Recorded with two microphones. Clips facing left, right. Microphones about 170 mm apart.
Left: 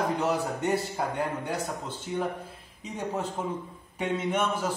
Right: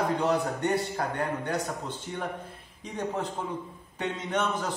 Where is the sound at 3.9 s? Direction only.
10° left (ahead or behind).